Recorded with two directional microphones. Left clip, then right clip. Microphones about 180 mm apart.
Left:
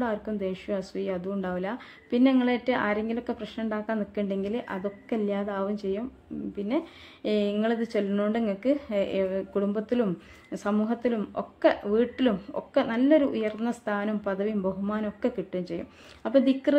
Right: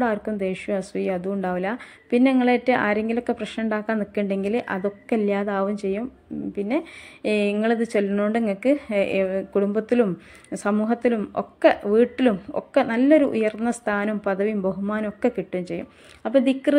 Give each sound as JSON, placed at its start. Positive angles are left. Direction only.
{"t": 0.0, "sound": "a woman's voice", "side_deg": -20}
{"t": 7.2, "sound": "a woman's voice", "side_deg": -20}